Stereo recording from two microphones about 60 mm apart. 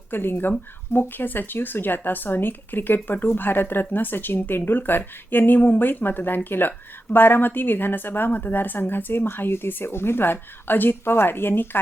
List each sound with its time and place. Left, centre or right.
0.1 s speech: left